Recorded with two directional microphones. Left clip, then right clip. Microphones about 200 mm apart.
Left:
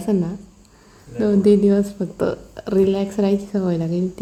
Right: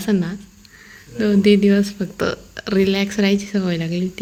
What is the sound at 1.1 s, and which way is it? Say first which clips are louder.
Speech: even; 25° right (ahead or behind).